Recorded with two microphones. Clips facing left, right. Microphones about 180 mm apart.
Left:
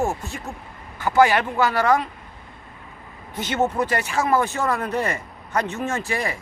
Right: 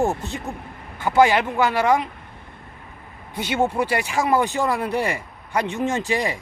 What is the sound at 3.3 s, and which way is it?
Speech, 10° right (ahead or behind).